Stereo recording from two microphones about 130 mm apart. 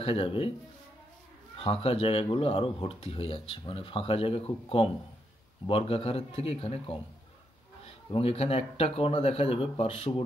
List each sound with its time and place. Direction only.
0.0 s speech: 45° left (ahead or behind)
1.6 s speech: 45° left (ahead or behind)